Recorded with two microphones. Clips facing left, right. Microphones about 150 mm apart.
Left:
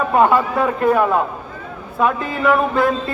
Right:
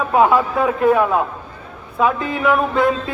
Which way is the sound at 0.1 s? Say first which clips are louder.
Right 1 dB; centre (ahead or behind).